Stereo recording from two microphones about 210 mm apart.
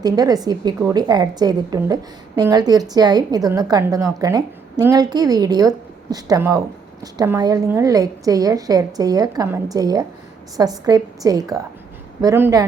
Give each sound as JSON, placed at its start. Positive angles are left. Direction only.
{"t": 0.0, "sound": "a woman's voice", "side_deg": -15}